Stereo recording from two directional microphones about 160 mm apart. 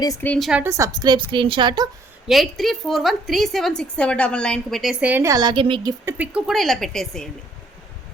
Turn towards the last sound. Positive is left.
turn(degrees=0)  # may be behind; listen again after turning